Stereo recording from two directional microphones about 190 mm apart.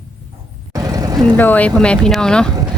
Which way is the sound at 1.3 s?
10° left (ahead or behind).